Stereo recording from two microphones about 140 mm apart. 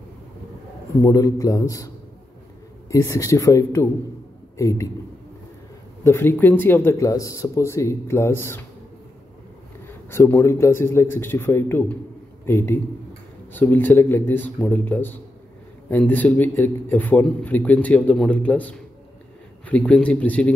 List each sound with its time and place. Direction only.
1.0 s speech: 25° left (ahead or behind)
2.9 s speech: 20° left (ahead or behind)
6.0 s a man's voice: 15° left (ahead or behind)
9.8 s a man's voice: 15° left (ahead or behind)